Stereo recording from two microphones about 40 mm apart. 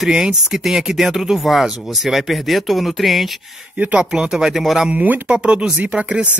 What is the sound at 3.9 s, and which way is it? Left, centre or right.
Speech, right.